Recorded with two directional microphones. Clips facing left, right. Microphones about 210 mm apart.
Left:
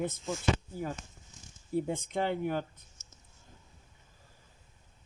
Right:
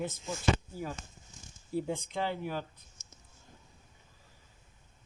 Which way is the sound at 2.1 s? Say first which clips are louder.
Left 6 dB; 55° left (ahead or behind).